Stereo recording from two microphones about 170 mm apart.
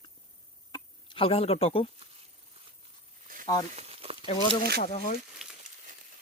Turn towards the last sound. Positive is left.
turn(degrees=-5)  # may be behind; listen again after turning